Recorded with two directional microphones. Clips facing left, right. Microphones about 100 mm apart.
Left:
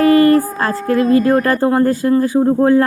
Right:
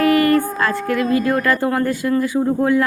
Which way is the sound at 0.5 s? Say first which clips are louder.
Left 3 dB; 35° left (ahead or behind).